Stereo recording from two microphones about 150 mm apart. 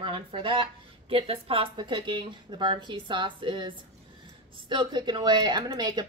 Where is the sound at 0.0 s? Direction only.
35° right (ahead or behind).